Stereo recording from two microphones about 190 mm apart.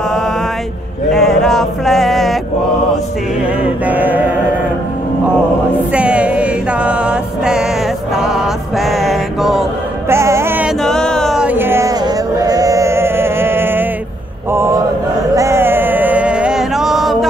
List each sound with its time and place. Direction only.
1.1 s male singing: centre (ahead or behind)
3.8 s music: 10° right (ahead or behind)
5.9 s music: 5° right (ahead or behind)
8.1 s a sound: 5° right (ahead or behind)
10.0 s music: 15° right (ahead or behind)
10.8 s music: 5° left (ahead or behind)
14.5 s mantra: 15° right (ahead or behind)
15.3 s music: 15° right (ahead or behind)